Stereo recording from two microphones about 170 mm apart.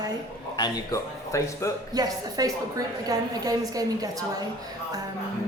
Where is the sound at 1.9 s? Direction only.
20° right (ahead or behind).